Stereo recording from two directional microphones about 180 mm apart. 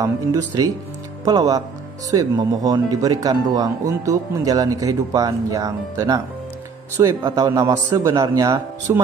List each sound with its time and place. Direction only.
0.0 s speech: 20° right (ahead or behind)